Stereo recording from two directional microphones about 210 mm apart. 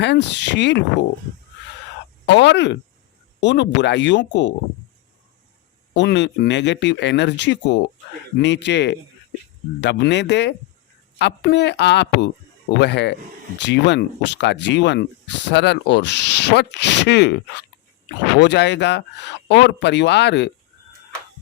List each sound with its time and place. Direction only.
0.0 s speech: 55° left (ahead or behind)
2.2 s speech: 55° left (ahead or behind)
6.0 s speech: 55° left (ahead or behind)